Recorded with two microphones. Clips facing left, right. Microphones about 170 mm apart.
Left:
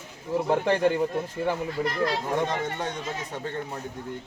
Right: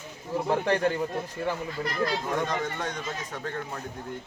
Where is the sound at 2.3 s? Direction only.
25° left (ahead or behind).